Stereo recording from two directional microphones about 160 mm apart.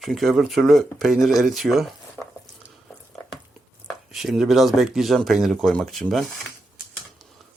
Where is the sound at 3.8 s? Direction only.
Centre (ahead or behind).